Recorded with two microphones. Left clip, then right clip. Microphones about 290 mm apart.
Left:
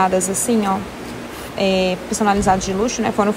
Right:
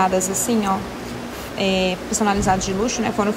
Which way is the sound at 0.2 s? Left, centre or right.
Centre.